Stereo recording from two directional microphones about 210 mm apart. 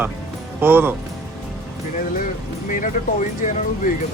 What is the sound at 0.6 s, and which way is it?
Speech, 10° right (ahead or behind).